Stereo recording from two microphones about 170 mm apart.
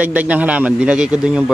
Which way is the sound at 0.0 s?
10° right (ahead or behind).